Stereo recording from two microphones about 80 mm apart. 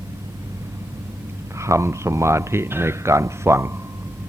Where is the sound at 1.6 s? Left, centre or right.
Right.